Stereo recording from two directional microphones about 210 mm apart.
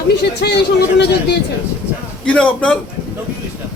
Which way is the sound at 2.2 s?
5° left (ahead or behind).